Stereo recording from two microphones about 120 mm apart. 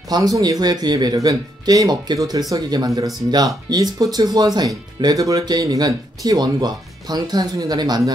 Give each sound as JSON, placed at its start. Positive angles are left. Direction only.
{"t": 0.1, "sound": "speech", "side_deg": -35}